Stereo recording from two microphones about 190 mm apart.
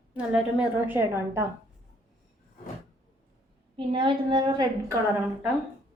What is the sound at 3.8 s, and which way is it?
A woman's voice, 25° right (ahead or behind).